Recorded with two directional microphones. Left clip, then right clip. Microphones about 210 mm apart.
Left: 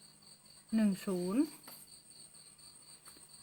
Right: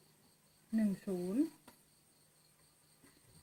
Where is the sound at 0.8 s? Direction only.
30° left (ahead or behind).